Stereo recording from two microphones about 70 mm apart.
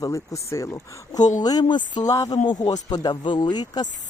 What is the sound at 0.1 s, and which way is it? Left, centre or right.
Speech, left.